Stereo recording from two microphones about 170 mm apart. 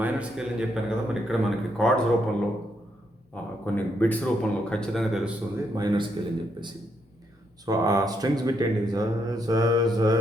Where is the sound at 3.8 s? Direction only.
10° left (ahead or behind).